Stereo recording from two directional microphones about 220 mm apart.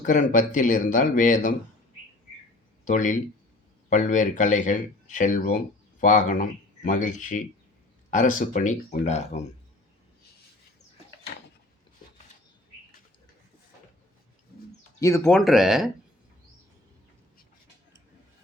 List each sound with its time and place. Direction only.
0.0 s speech: 35° left (ahead or behind)
2.8 s speech: 35° left (ahead or behind)
15.0 s speech: 10° left (ahead or behind)